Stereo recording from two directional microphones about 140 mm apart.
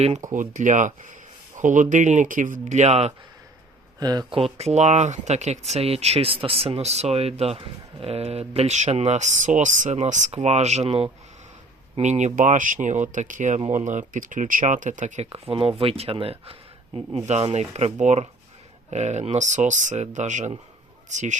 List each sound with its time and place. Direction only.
0.0 s speech: 50° right (ahead or behind)
0.3 s speech: 65° right (ahead or behind)
4.0 s speech: 30° right (ahead or behind)
4.4 s speech: 45° right (ahead or behind)
12.0 s speech: 60° right (ahead or behind)